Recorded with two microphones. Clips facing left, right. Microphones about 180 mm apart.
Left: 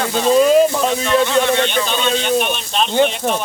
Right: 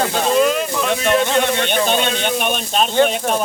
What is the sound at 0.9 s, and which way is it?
Speech, 55° right (ahead or behind).